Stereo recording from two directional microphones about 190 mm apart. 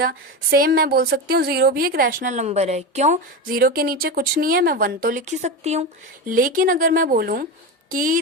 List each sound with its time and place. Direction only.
0.0 s speech: 50° right (ahead or behind)
3.6 s speech: 50° right (ahead or behind); by 5.8 s 35° right (ahead or behind)
6.2 s speech: 45° right (ahead or behind)